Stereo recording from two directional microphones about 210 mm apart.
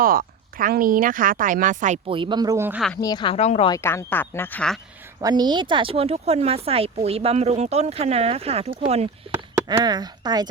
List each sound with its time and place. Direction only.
0.0 s a woman's voice: 45° right (ahead or behind); by 2.8 s 10° right (ahead or behind)
3.0 s a woman's voice: 20° left (ahead or behind)
3.7 s speech: 10° left (ahead or behind)
5.2 s speech: 20° right (ahead or behind)
9.3 s speech: 15° right (ahead or behind)